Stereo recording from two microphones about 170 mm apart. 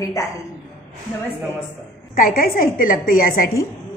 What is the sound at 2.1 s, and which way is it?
A woman's voice, 55° left (ahead or behind).